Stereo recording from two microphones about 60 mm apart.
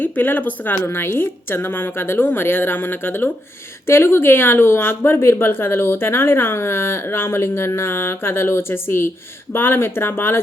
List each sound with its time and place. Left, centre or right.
0.0 s a woman's voice: left